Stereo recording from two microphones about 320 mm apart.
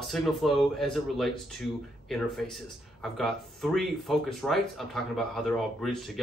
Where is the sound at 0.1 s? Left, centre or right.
Centre.